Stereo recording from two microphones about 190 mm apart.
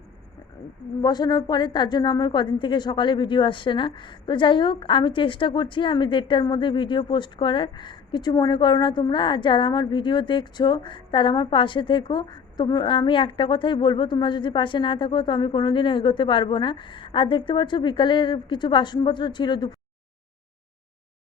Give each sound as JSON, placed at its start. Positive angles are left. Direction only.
{"t": 1.0, "sound": "a woman's voice", "side_deg": 20}